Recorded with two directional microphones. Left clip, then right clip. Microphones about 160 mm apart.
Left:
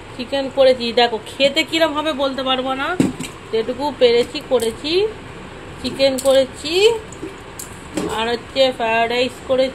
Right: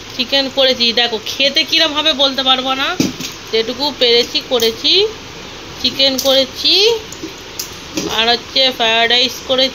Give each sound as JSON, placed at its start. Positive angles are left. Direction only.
{"t": 0.2, "sound": "speech", "side_deg": -5}
{"t": 8.1, "sound": "speech", "side_deg": 0}